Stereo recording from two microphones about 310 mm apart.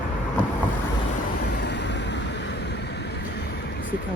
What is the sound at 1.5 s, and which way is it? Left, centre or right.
Vehicle, left.